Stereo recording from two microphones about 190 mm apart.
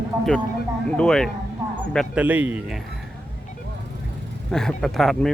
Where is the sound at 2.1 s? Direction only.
10° right (ahead or behind).